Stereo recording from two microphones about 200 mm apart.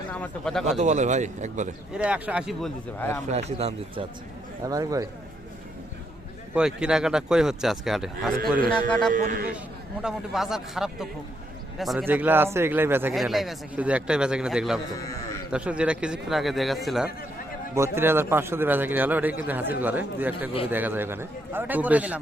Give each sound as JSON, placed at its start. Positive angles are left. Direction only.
{"t": 0.1, "sound": "speech", "side_deg": 5}
{"t": 0.8, "sound": "speech", "side_deg": -35}
{"t": 1.9, "sound": "speech", "side_deg": -5}
{"t": 3.6, "sound": "speech", "side_deg": -30}
{"t": 4.6, "sound": "a man's voice", "side_deg": -15}
{"t": 6.5, "sound": "speech", "side_deg": -5}
{"t": 9.1, "sound": "speech", "side_deg": -40}
{"t": 10.0, "sound": "a man's voice", "side_deg": 0}
{"t": 13.1, "sound": "speech", "side_deg": 0}
{"t": 17.7, "sound": "a man's voice", "side_deg": -10}